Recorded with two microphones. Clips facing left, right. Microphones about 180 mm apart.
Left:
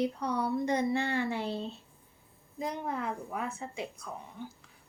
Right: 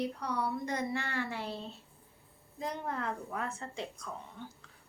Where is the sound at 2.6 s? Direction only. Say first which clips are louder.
Left 2 dB; 10° left (ahead or behind).